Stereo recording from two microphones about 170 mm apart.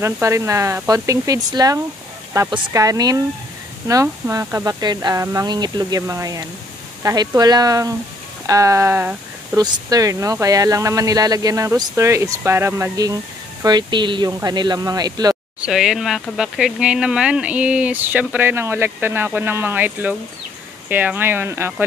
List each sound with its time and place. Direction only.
0.0 s speech: 15° right (ahead or behind)
15.6 s speech: centre (ahead or behind)